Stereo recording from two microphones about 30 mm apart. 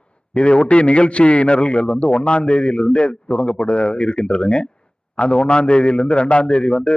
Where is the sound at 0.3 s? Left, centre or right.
Left.